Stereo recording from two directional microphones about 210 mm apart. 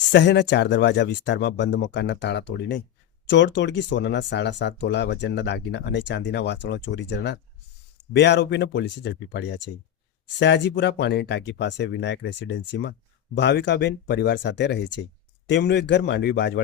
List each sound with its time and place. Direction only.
0.1 s speech: 55° left (ahead or behind)